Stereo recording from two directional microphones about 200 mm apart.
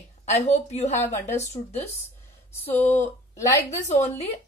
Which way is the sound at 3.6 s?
35° left (ahead or behind).